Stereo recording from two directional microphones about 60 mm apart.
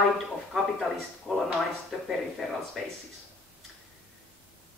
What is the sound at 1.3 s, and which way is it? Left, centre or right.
Speech, centre.